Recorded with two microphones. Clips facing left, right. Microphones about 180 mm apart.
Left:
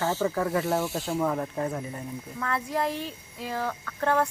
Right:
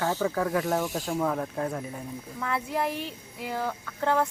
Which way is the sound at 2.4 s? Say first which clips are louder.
Even; 15° right (ahead or behind).